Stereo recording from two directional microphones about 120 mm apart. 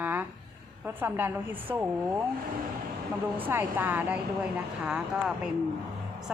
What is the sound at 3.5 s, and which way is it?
A woman's voice, 15° right (ahead or behind).